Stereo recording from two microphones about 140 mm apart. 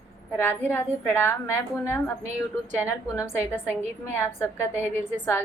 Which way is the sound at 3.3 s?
15° left (ahead or behind).